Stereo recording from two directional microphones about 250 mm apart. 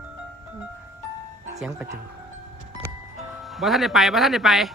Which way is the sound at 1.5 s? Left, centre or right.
Centre.